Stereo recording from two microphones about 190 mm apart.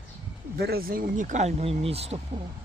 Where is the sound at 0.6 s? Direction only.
55° right (ahead or behind); by 2.2 s 30° right (ahead or behind).